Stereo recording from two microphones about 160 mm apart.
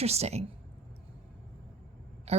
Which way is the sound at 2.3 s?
40° right (ahead or behind).